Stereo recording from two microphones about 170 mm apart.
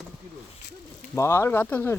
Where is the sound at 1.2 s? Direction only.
15° left (ahead or behind).